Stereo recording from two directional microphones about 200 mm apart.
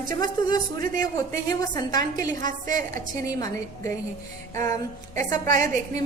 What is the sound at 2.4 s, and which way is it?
Speech, 40° right (ahead or behind).